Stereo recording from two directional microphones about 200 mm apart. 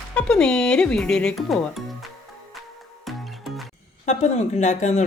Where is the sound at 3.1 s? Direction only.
Centre (ahead or behind).